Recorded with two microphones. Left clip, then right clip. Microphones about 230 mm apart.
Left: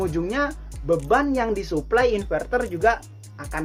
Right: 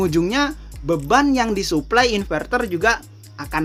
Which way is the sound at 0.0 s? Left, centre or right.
Right.